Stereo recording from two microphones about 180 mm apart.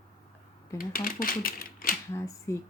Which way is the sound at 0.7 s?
50° left (ahead or behind).